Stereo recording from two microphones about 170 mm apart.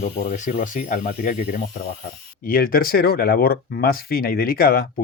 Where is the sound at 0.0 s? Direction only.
50° left (ahead or behind).